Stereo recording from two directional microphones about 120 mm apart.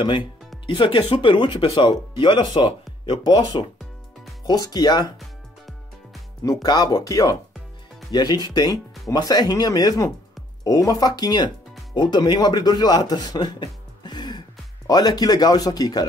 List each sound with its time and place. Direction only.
0.0 s speech: 40° left (ahead or behind)
5.2 s music: centre (ahead or behind)
6.4 s speech: 30° left (ahead or behind)